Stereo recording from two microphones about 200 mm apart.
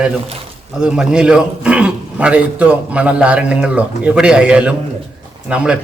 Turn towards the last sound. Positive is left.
turn(degrees=-5)  # may be behind; listen again after turning